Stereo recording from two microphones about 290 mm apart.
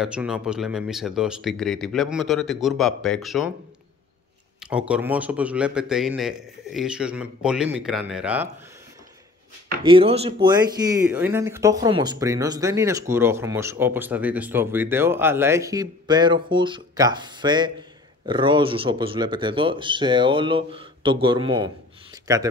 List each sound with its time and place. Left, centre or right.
0.0 s speech: centre
4.6 s speech: centre
9.8 s speech: centre